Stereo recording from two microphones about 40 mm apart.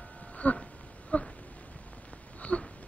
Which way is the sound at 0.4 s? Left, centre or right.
Left.